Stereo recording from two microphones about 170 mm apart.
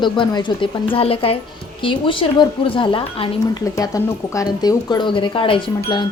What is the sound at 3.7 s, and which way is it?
Speech, 20° left (ahead or behind).